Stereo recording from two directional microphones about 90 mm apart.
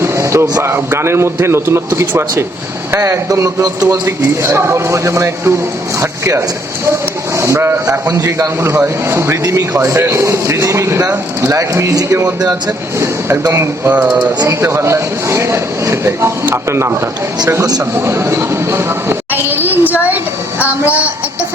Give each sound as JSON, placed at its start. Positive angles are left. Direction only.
{"t": 0.0, "sound": "music", "side_deg": -30}
{"t": 0.6, "sound": "speech", "side_deg": -30}
{"t": 9.4, "sound": "speech", "side_deg": -40}
{"t": 13.0, "sound": "a sound", "side_deg": -30}
{"t": 13.5, "sound": "speech", "side_deg": -30}
{"t": 13.9, "sound": "a sound", "side_deg": -15}
{"t": 14.4, "sound": "speech", "side_deg": -30}
{"t": 18.0, "sound": "speech", "side_deg": -30}
{"t": 20.6, "sound": "a sound", "side_deg": -15}